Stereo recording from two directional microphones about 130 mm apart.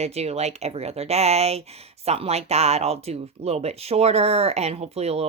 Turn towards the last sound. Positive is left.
turn(degrees=-55)  # may be behind; listen again after turning